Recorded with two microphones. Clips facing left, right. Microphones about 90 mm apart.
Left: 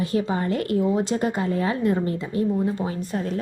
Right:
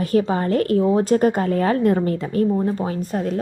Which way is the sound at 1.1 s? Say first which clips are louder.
Right 6 dB; 55° right (ahead or behind).